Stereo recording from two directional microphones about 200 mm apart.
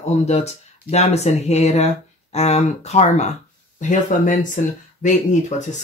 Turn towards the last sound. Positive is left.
turn(degrees=40)  # may be behind; listen again after turning